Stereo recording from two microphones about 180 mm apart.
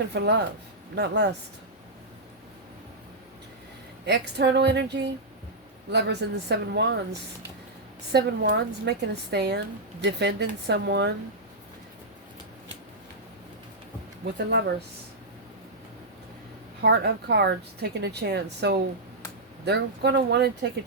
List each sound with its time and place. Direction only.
0.1 s a woman's voice: 70° right (ahead or behind)
4.0 s a woman's voice: 70° right (ahead or behind)
8.1 s a woman's voice: 65° right (ahead or behind)
14.3 s a woman's voice: 75° right (ahead or behind)
16.8 s a woman's voice: 70° right (ahead or behind)